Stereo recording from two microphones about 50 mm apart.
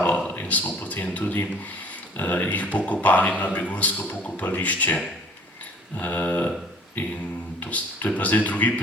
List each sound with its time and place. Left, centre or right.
0.3 s a man's voice: left
7.6 s a man's voice: left